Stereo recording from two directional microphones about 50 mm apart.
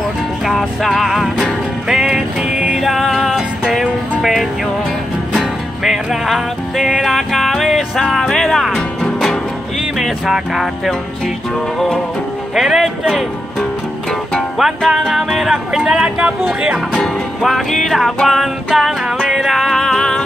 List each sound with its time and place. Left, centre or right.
0.5 s music: centre
1.9 s music: centre
9.9 s music: centre
12.5 s music: centre
14.6 s music: centre
17.4 s music: centre